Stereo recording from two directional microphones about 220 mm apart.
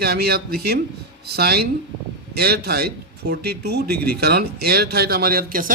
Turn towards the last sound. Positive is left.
turn(degrees=-45)  # may be behind; listen again after turning